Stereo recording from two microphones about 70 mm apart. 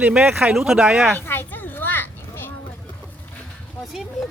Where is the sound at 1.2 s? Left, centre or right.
Left.